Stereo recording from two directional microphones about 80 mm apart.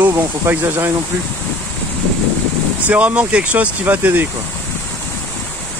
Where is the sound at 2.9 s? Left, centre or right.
Centre.